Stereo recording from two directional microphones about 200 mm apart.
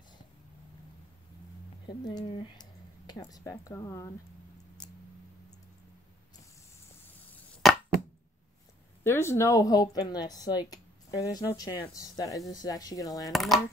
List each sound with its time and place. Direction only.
1.9 s speech: 20° left (ahead or behind)
7.6 s a sound: centre (ahead or behind)
9.0 s a woman's voice: 10° left (ahead or behind)
13.3 s speech: centre (ahead or behind)